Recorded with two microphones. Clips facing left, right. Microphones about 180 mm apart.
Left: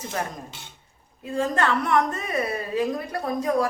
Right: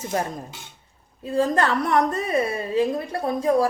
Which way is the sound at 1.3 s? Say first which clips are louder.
Right 3 dB; 35° right (ahead or behind).